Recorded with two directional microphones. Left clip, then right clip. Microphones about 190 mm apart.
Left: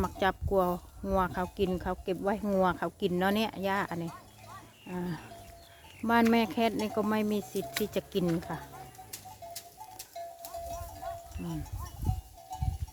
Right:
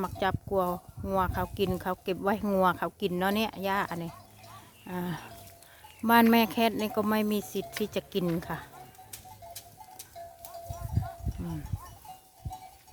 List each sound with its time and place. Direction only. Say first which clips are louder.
0.0 s speech: left 1 dB; 5° right (ahead or behind)
8.4 s speech: right 2 dB; 30° right (ahead or behind)
9.1 s bird: left 2 dB; 35° right (ahead or behind)